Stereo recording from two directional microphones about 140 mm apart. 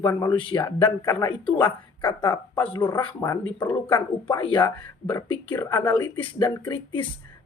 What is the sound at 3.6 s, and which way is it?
Speech, 20° left (ahead or behind).